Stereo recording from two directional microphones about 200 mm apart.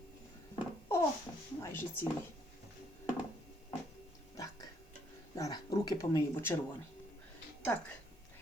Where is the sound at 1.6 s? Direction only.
10° left (ahead or behind).